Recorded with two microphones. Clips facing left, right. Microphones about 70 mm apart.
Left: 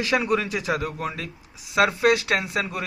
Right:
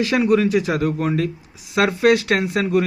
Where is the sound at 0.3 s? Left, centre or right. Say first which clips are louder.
Right 7 dB; centre.